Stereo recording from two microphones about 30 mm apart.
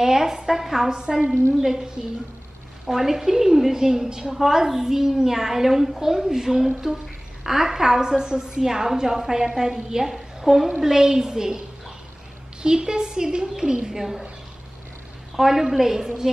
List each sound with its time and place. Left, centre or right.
0.0 s a woman's voice: centre
2.9 s a woman's voice: centre
12.6 s a woman's voice: right
13.9 s a woman's voice: centre
15.3 s a woman's voice: centre
16.0 s a woman's voice: right